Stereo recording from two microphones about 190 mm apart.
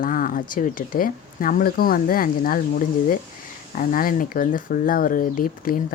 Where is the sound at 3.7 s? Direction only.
45° left (ahead or behind).